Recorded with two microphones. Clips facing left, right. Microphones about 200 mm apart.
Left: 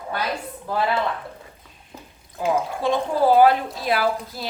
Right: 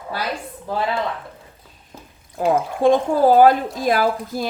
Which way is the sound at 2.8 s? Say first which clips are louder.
Right 8 dB; 45° right (ahead or behind).